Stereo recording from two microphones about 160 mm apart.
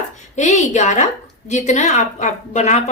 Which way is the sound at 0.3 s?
50° left (ahead or behind).